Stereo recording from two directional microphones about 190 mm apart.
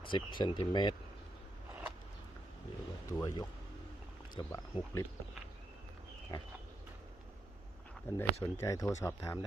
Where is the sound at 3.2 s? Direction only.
15° left (ahead or behind).